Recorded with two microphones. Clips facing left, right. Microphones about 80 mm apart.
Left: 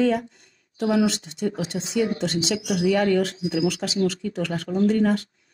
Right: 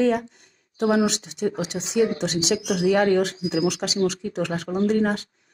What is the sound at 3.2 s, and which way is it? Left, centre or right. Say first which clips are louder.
Speech: right 1 dB; right.